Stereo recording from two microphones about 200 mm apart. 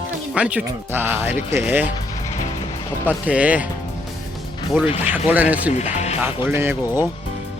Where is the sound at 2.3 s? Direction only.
35° left (ahead or behind).